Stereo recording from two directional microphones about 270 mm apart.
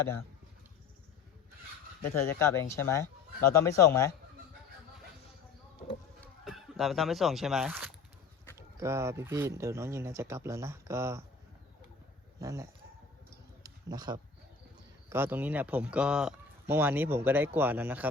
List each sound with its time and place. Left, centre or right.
2.2 s speech: centre
6.4 s speech: centre
12.4 s speech: centre
13.6 s a sound: centre
15.1 s speech: centre